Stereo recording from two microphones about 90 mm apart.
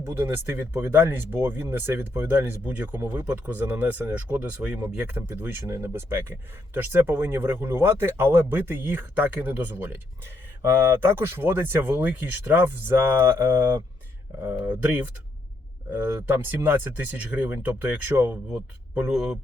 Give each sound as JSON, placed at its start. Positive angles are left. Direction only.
{"t": 0.0, "sound": "speech", "side_deg": -25}
{"t": 5.3, "sound": "speech", "side_deg": -25}
{"t": 14.8, "sound": "speech", "side_deg": -15}
{"t": 18.9, "sound": "speech", "side_deg": -10}